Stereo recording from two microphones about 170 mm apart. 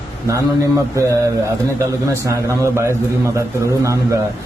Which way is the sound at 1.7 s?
15° right (ahead or behind).